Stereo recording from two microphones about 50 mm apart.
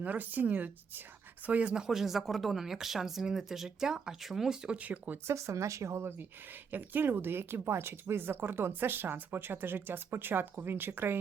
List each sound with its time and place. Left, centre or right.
0.0 s speech: right
1.7 s speech: centre
4.8 s speech: right
5.3 s speech: right
6.0 s speech: right